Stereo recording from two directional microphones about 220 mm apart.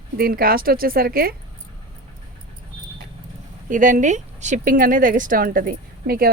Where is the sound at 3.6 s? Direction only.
35° right (ahead or behind).